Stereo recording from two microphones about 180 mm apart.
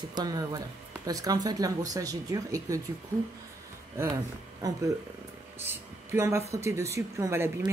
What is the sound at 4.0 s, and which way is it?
Speech, 15° right (ahead or behind).